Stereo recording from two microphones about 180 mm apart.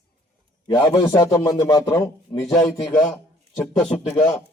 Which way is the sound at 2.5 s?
Centre (ahead or behind).